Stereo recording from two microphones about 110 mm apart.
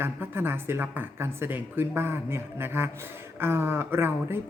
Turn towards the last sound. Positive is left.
turn(degrees=-20)  # may be behind; listen again after turning